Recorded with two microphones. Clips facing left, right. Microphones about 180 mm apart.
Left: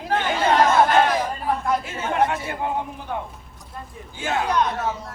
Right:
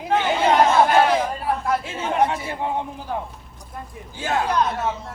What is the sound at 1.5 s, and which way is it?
Chatter, centre (ahead or behind).